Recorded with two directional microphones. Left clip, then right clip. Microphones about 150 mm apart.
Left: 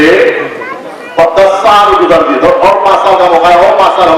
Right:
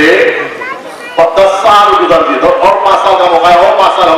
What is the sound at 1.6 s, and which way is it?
Music, 25° left (ahead or behind).